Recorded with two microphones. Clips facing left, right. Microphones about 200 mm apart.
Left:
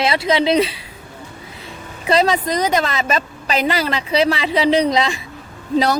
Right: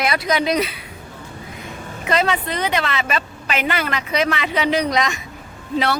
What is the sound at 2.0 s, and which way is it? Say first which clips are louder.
A woman's voice: left 4 dB; 35° left (ahead or behind).